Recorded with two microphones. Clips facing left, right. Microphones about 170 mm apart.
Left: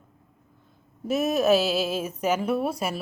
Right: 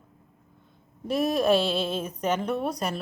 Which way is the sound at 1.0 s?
5° left (ahead or behind).